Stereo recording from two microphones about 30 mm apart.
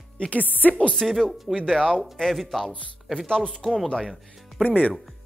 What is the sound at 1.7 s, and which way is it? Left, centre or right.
Speech, left.